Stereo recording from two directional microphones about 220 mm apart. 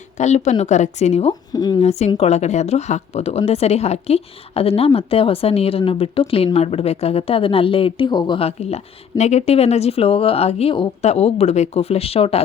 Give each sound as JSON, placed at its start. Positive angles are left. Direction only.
{"t": 0.2, "sound": "a woman's voice", "side_deg": 30}
{"t": 1.3, "sound": "speech", "side_deg": 20}
{"t": 1.8, "sound": "speech", "side_deg": 30}